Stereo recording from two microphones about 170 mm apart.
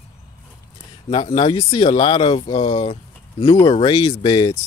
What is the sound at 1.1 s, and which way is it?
Speech, 30° left (ahead or behind).